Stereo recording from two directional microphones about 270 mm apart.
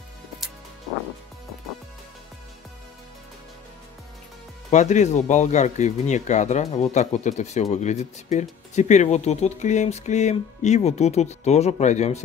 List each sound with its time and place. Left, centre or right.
4.6 s speech: left